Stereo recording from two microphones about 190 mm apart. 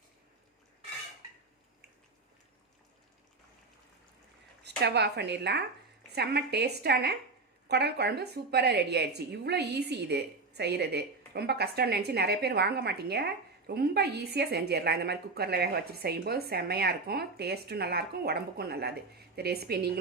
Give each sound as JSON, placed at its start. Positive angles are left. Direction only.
{"t": 4.8, "sound": "a woman's voice", "side_deg": -60}